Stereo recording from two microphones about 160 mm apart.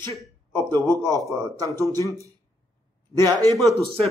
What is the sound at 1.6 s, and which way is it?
Speech, 20° right (ahead or behind).